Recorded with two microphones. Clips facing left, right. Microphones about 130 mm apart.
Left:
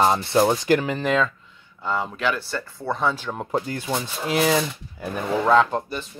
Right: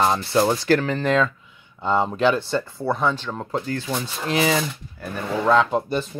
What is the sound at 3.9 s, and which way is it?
Speech, 5° left (ahead or behind).